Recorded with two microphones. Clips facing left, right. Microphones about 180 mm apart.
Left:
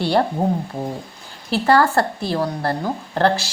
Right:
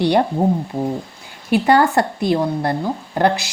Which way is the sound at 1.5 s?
15° right (ahead or behind).